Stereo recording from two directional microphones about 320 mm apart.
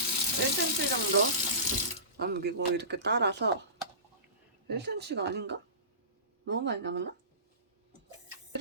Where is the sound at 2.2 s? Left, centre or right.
Right.